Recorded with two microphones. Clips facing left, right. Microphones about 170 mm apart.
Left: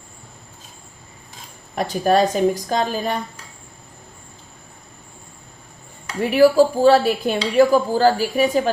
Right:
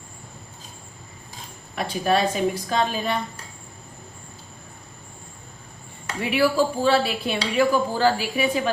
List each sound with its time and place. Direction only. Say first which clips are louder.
1.7 s a woman's voice: left 5 dB; 45° left (ahead or behind)
6.2 s a woman's voice: left 7 dB; 40° left (ahead or behind)